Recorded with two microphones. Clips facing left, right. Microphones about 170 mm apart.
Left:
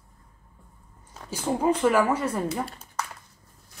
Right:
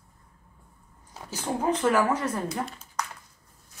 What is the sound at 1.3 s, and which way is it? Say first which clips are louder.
Speech: left 3 dB; 10° left (ahead or behind).